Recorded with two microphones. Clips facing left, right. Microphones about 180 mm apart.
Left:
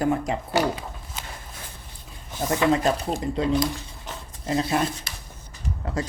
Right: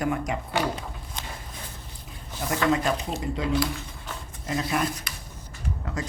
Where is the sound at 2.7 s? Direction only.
35° left (ahead or behind).